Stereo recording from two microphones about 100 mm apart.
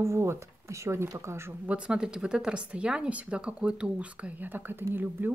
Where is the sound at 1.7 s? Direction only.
10° right (ahead or behind).